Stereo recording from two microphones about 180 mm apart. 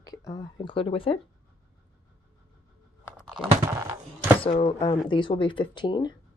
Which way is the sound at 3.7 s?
15° right (ahead or behind).